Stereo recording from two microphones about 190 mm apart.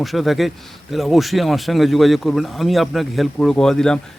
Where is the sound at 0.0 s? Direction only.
Centre (ahead or behind).